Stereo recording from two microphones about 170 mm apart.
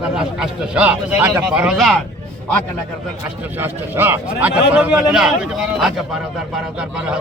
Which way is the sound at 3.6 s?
10° right (ahead or behind).